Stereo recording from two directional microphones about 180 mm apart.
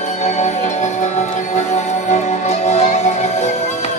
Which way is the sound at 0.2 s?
40° left (ahead or behind).